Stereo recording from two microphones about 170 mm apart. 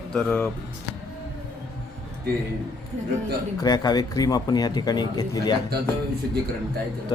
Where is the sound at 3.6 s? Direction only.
25° left (ahead or behind).